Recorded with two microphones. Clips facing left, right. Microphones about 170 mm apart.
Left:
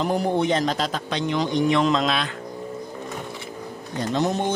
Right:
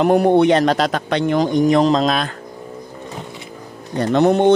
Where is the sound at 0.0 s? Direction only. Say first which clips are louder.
Right 9 dB; 65° right (ahead or behind); by 2.3 s 45° right (ahead or behind).